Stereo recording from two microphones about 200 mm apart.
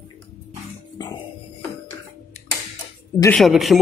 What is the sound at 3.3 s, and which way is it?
Speech, centre (ahead or behind).